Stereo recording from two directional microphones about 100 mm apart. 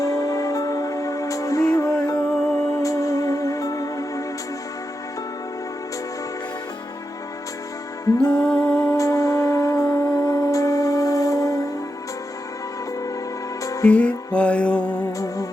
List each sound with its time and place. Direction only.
0.0 s music: 35° left (ahead or behind)
8.2 s music: 10° left (ahead or behind)
8.9 s music: 35° left (ahead or behind)
13.8 s music: 15° left (ahead or behind)